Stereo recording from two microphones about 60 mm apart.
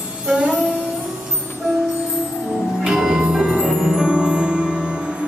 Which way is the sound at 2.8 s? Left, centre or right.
Centre.